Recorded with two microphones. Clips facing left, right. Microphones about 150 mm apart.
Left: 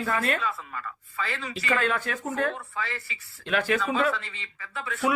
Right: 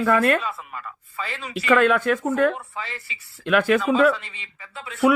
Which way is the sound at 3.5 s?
60° right (ahead or behind).